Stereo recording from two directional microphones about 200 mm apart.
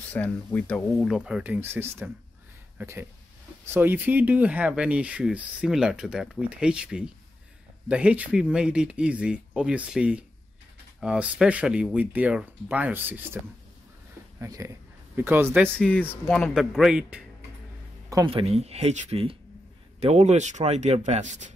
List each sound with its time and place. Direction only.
0.1 s speech: 5° left (ahead or behind); by 13.4 s 10° right (ahead or behind)
14.4 s a man's voice: 15° right (ahead or behind)
15.7 s speech: 5° left (ahead or behind)
18.1 s speech: 25° right (ahead or behind)